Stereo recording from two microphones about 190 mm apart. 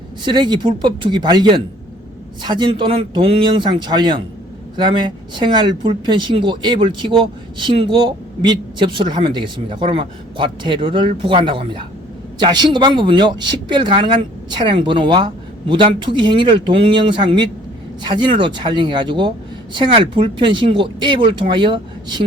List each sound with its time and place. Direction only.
0.3 s speech: 25° right (ahead or behind)